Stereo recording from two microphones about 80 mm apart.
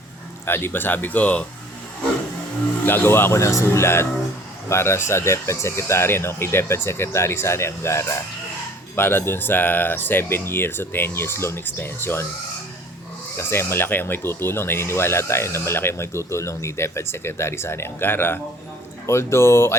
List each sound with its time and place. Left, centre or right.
0.4 s speech: left
2.8 s speech: left
13.3 s speech: left